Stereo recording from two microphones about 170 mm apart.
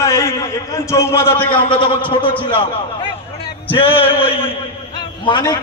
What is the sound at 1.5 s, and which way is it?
Speech, 30° left (ahead or behind).